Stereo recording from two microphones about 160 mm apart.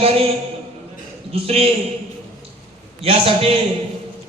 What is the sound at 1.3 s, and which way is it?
Speech, 40° right (ahead or behind).